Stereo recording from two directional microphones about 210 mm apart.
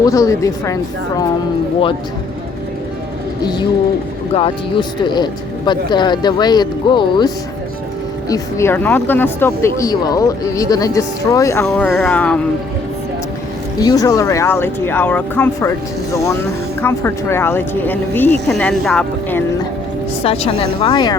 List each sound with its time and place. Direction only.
0.0 s speech: 15° left (ahead or behind)
3.4 s speech: 20° left (ahead or behind)
8.3 s speech: 15° left (ahead or behind)
11.6 s speech: centre (ahead or behind)
13.7 s speech: 20° left (ahead or behind)
16.8 s speech: 10° left (ahead or behind)
20.2 s speech: 30° left (ahead or behind)